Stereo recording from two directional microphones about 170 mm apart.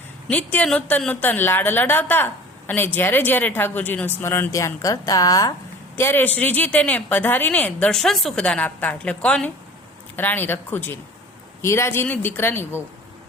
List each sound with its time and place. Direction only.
0.3 s a woman's voice: 10° left (ahead or behind)